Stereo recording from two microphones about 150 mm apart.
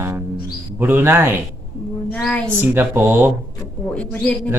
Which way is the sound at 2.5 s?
15° right (ahead or behind).